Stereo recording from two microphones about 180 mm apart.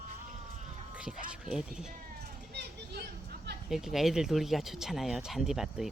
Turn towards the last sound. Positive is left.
turn(degrees=0)  # may be behind; listen again after turning